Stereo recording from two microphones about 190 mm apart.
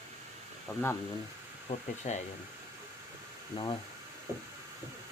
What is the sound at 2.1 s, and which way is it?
Speech, 40° left (ahead or behind).